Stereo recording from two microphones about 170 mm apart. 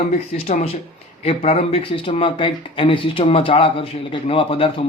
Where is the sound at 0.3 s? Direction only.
35° left (ahead or behind).